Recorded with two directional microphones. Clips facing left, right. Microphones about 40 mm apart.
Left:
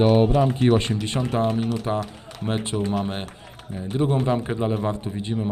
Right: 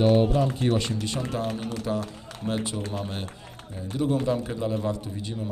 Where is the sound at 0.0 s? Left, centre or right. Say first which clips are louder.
Left 3 dB; left.